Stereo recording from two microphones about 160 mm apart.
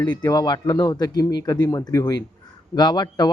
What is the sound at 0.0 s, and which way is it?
A man's voice, 25° left (ahead or behind).